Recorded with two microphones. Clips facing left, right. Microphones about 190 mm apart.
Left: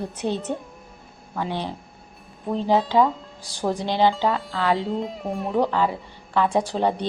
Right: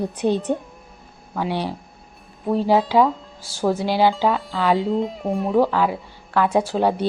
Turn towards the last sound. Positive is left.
turn(degrees=-5)  # may be behind; listen again after turning